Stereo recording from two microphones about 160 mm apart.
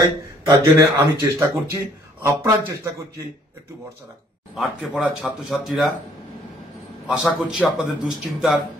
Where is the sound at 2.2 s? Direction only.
20° right (ahead or behind).